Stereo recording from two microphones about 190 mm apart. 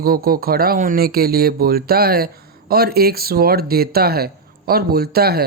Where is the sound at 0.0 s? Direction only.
50° right (ahead or behind).